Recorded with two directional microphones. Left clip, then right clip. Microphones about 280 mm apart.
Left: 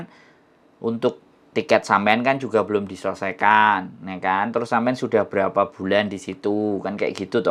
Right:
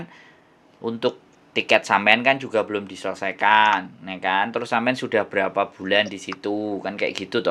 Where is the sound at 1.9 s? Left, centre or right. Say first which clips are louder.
Right 1 dB; left.